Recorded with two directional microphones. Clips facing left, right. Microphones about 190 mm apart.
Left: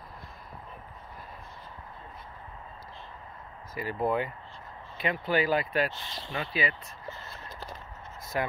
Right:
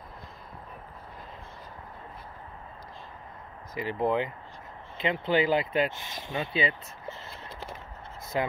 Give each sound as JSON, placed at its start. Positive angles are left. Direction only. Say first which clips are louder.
{"t": 3.7, "sound": "speech", "louder": "right 2 dB", "side_deg": -20}